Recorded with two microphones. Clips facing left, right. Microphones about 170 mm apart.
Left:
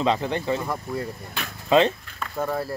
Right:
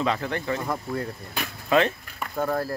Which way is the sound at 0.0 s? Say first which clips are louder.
Left 3 dB; 20° left (ahead or behind).